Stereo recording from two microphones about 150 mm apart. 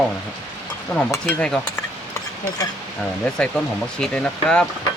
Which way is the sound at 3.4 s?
5° left (ahead or behind).